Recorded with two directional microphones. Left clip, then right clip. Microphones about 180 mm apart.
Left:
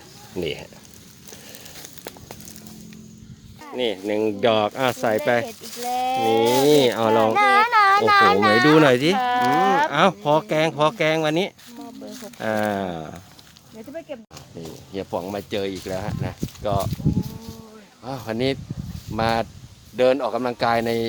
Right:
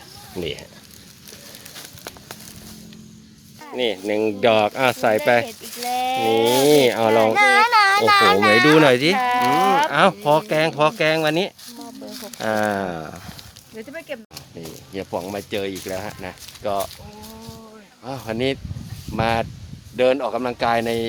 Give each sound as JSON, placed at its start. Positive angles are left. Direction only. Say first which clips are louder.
{"t": 0.3, "sound": "speech", "louder": "left 1 dB", "side_deg": 15}
{"t": 3.8, "sound": "speech", "louder": "right 2 dB", "side_deg": -5}
{"t": 7.3, "sound": "a child's voice", "louder": "right 1 dB", "side_deg": -25}
{"t": 8.8, "sound": "speech", "louder": "right 2 dB", "side_deg": 0}
{"t": 13.7, "sound": "speech", "louder": "right 2 dB", "side_deg": -55}
{"t": 14.9, "sound": "speech", "louder": "even", "side_deg": 15}
{"t": 18.0, "sound": "speech", "louder": "right 1 dB", "side_deg": 10}